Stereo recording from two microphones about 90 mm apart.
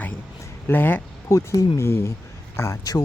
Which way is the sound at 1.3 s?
35° left (ahead or behind).